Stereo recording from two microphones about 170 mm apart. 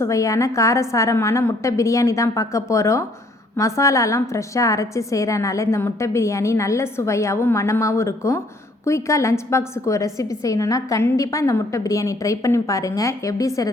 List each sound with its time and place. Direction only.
0.0 s a woman's voice: 20° left (ahead or behind)